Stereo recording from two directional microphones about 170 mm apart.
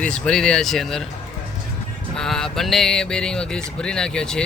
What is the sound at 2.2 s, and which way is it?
Speech, 5° left (ahead or behind).